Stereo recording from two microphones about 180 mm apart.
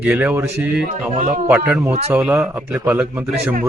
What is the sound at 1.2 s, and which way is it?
Speech, 45° right (ahead or behind).